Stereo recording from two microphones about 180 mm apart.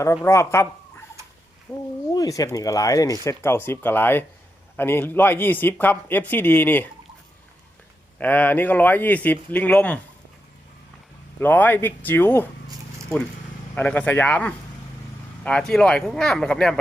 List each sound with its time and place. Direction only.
0.3 s speech: 15° left (ahead or behind)
8.2 s speech: 10° left (ahead or behind)
11.3 s speech: 10° left (ahead or behind)
13.7 s speech: 10° left (ahead or behind)